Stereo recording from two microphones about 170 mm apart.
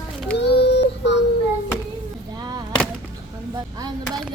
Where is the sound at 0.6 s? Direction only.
80° left.